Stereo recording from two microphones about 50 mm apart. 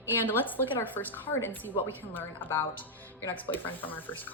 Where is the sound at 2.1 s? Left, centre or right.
Left.